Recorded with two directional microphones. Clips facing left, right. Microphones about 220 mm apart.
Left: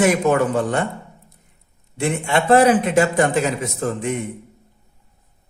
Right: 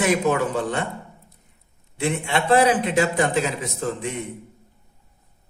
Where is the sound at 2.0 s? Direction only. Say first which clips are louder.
Left 3 dB; 50° left (ahead or behind).